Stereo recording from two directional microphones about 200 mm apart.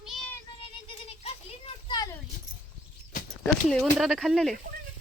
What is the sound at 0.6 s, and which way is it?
Rattle, 30° left (ahead or behind).